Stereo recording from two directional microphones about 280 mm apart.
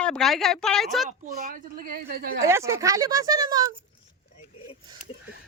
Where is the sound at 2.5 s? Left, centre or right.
Centre.